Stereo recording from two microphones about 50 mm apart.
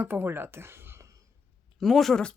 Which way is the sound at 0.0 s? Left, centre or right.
Right.